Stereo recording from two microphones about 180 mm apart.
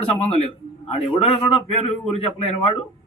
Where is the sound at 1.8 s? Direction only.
35° left (ahead or behind).